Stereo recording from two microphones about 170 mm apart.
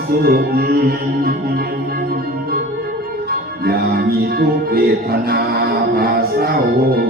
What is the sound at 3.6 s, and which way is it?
Music, 60° right (ahead or behind).